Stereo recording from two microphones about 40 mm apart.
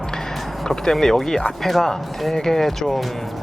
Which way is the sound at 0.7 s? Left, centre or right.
Centre.